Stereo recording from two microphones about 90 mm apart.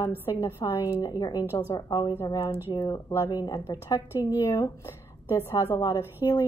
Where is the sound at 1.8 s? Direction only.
50° left (ahead or behind); by 5.5 s 30° left (ahead or behind).